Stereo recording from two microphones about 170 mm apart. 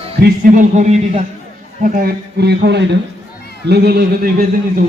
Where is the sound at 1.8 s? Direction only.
55° right (ahead or behind); by 3.0 s 90° right.